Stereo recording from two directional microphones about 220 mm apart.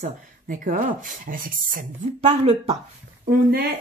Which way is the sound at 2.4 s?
25° right (ahead or behind).